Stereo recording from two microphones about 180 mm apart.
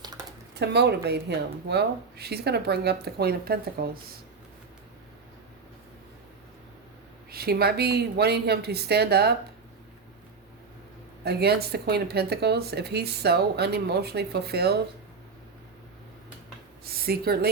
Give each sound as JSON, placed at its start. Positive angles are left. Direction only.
{"t": 0.5, "sound": "speech", "side_deg": -70}
{"t": 7.3, "sound": "speech", "side_deg": -60}
{"t": 11.2, "sound": "speech", "side_deg": -65}
{"t": 16.8, "sound": "speech", "side_deg": -60}